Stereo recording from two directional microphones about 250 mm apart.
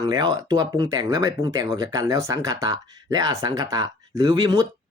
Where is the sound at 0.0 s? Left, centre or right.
Centre.